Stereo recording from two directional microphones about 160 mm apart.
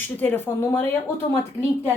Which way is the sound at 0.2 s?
10° left (ahead or behind).